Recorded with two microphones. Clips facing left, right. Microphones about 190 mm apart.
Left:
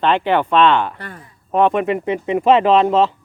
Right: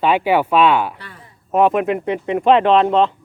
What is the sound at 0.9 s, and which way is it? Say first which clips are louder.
Speech: left 6 dB; 50° left (ahead or behind).